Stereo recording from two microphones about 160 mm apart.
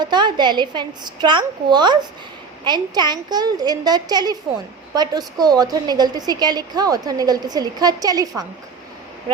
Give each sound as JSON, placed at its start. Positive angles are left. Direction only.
{"t": 0.0, "sound": "a woman's voice", "side_deg": -30}